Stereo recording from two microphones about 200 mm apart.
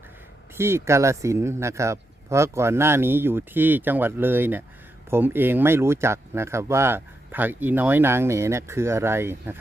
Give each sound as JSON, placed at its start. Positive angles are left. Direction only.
{"t": 0.5, "sound": "speech", "side_deg": -10}